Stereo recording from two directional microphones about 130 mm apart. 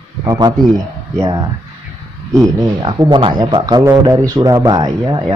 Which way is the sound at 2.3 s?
25° right (ahead or behind).